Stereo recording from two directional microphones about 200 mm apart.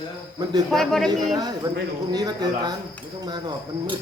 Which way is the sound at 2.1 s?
20° right (ahead or behind).